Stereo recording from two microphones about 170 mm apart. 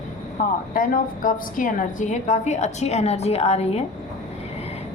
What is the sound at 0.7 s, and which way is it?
A woman's voice, 55° left (ahead or behind).